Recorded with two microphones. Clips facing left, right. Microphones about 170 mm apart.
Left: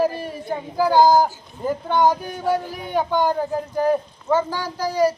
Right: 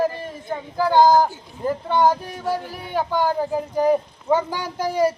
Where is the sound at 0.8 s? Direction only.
5° left (ahead or behind).